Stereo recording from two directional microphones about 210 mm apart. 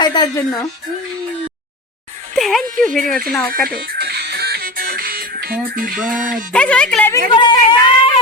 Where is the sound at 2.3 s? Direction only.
Centre (ahead or behind).